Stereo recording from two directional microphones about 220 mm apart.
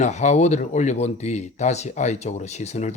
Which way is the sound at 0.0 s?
30° left (ahead or behind).